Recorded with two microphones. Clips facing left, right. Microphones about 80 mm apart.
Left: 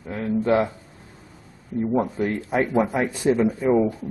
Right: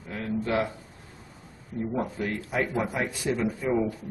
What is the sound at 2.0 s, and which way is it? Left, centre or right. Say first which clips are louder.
Speech: left 6 dB; left.